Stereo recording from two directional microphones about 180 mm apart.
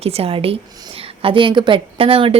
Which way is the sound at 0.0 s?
35° right (ahead or behind).